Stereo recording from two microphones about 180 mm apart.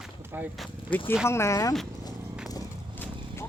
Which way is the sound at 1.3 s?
15° left (ahead or behind).